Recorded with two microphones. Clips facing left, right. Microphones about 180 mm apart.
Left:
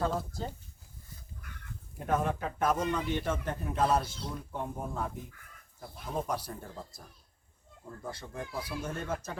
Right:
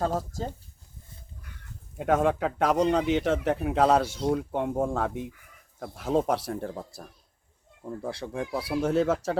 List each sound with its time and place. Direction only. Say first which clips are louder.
0.0 s speech: right 4 dB; 40° right (ahead or behind)
2.0 s speech: right 7 dB; 85° right